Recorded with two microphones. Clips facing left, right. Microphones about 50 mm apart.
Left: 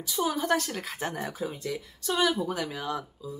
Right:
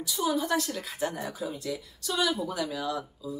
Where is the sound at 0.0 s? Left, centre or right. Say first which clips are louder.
Even; left.